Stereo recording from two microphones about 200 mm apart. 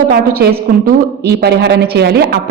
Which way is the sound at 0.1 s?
50° right (ahead or behind).